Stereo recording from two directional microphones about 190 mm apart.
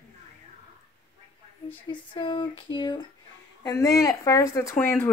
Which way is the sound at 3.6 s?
15° left (ahead or behind).